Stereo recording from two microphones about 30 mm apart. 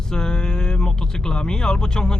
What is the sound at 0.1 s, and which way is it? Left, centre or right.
Speech, left.